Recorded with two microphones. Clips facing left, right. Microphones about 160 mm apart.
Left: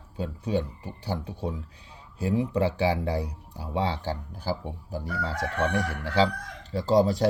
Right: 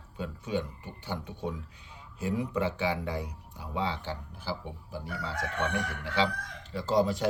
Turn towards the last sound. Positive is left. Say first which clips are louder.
# left 5 dB
turn(degrees=35)  # may be behind; listen again after turning